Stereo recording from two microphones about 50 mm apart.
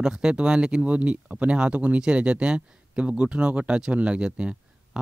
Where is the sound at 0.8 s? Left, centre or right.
Right.